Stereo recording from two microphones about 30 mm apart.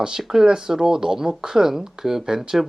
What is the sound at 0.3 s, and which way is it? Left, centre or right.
Speech, centre.